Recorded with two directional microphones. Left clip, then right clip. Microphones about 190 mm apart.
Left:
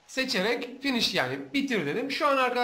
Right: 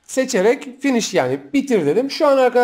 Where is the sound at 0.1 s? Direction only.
35° right (ahead or behind).